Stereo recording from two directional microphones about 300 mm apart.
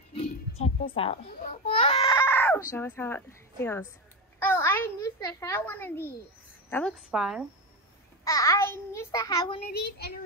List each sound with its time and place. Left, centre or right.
0.1 s babbling: centre
2.7 s a woman's voice: centre
8.2 s a sound: centre
9.7 s a child's voice: left